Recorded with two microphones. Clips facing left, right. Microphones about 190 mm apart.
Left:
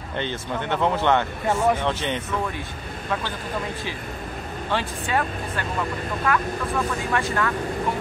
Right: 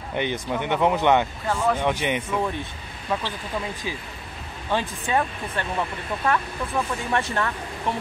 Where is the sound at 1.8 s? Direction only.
15° right (ahead or behind).